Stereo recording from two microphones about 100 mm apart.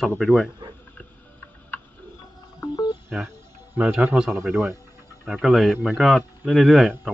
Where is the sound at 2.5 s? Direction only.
40° left (ahead or behind).